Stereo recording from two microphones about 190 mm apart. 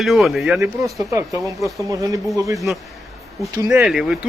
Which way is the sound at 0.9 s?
15° right (ahead or behind).